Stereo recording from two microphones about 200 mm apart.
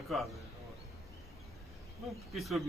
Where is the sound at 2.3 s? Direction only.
Centre (ahead or behind).